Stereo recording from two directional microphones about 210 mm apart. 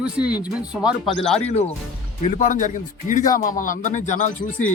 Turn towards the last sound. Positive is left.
turn(degrees=35)  # may be behind; listen again after turning